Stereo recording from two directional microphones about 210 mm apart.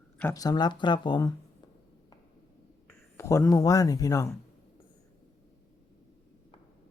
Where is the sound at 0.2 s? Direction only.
15° left (ahead or behind).